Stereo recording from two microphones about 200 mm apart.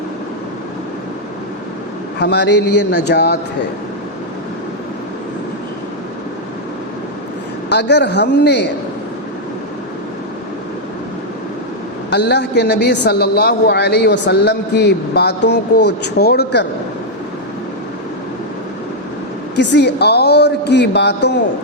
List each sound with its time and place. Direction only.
2.1 s a man's voice: 55° left (ahead or behind)
7.7 s a man's voice: 55° left (ahead or behind)
12.1 s a man's voice: 55° left (ahead or behind)
19.5 s a man's voice: 55° left (ahead or behind)